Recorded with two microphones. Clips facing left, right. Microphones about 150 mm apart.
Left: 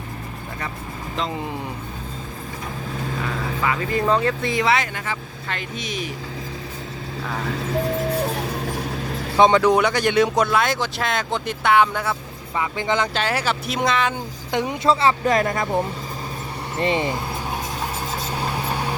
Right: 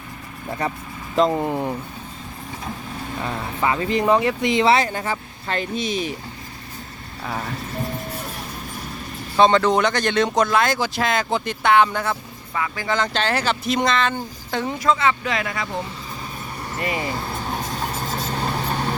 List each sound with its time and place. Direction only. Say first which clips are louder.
3.6 s speech: right 3 dB; 25° right (ahead or behind)
4.6 s speech: right 3 dB; 30° right (ahead or behind)
7.6 s music: left 6 dB; 90° left
9.4 s speech: left 1 dB; 10° left (ahead or behind)
12.5 s speech: left 1 dB; 20° left (ahead or behind)
13.1 s speech: right 1 dB; 5° left (ahead or behind)
14.8 s speech: left 3 dB; 30° left (ahead or behind); by 15.8 s 50° left (ahead or behind)
16.7 s speech: left 4 dB; 25° left (ahead or behind)
17.5 s vehicle: right 1 dB; 5° left (ahead or behind)